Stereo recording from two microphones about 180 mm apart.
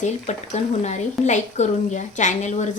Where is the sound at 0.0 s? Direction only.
40° left (ahead or behind).